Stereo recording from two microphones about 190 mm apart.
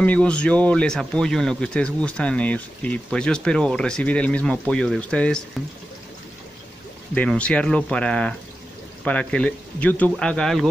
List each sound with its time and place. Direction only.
0.0 s speech: 5° left (ahead or behind)
7.2 s speech: 5° left (ahead or behind)